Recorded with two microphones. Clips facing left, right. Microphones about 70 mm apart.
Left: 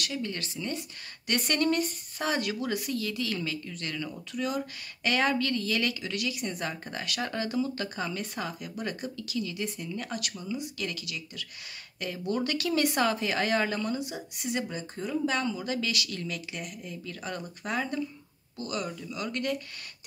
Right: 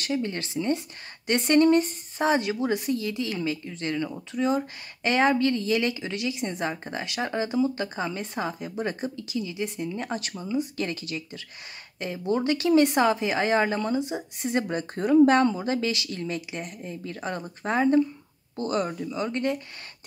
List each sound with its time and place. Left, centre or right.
0.0 s speech: right
14.7 s speech: right